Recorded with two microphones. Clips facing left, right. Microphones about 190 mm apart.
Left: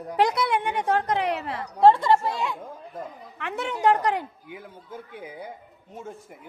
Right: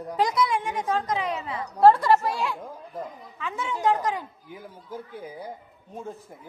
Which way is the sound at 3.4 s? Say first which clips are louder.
Left 2 dB; 65° left (ahead or behind).